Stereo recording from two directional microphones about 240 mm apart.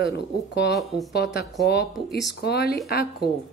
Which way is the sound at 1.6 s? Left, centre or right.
Left.